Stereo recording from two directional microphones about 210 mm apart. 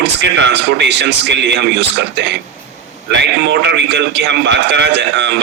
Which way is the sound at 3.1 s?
55° right (ahead or behind).